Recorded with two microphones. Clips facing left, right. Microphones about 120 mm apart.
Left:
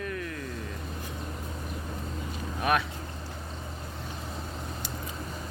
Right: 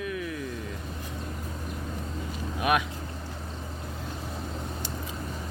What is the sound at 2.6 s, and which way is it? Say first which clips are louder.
Speech: right 1 dB; 10° right (ahead or behind).